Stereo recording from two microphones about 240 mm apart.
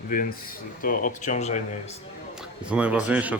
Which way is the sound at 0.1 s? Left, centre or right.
Left.